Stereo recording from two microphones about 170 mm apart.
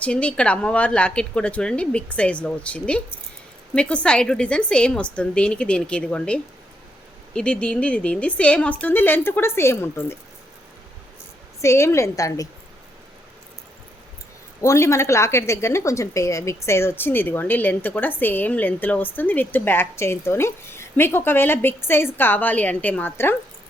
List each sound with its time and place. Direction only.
0.0 s a woman's voice: 5° left (ahead or behind)
11.6 s a woman's voice: 15° left (ahead or behind)
14.6 s a woman's voice: 15° left (ahead or behind)